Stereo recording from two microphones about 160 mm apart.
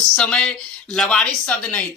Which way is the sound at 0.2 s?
5° left (ahead or behind).